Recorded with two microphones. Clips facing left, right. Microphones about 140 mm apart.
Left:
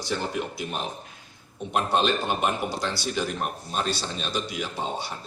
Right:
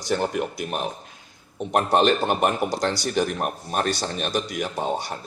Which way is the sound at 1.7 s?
60° right (ahead or behind).